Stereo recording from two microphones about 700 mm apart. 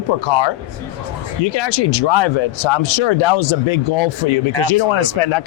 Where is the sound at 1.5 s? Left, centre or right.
Left.